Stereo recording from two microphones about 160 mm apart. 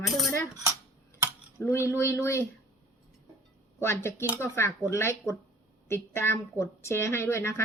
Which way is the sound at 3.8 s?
15° left (ahead or behind).